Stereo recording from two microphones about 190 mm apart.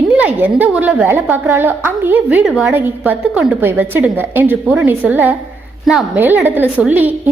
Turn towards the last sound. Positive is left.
turn(degrees=-10)  # may be behind; listen again after turning